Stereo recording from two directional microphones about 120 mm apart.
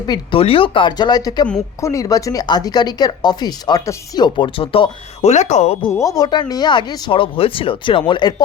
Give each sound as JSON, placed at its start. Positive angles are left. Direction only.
{"t": 0.0, "sound": "speech", "side_deg": 40}
{"t": 0.3, "sound": "speech", "side_deg": 50}
{"t": 5.3, "sound": "speech", "side_deg": 75}
{"t": 5.9, "sound": "speech", "side_deg": 30}